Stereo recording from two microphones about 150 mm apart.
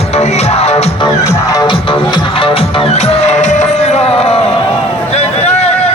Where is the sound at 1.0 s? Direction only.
20° left (ahead or behind); by 4.4 s 40° left (ahead or behind).